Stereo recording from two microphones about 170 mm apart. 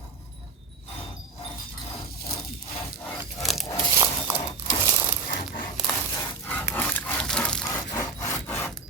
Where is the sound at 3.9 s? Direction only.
20° right (ahead or behind).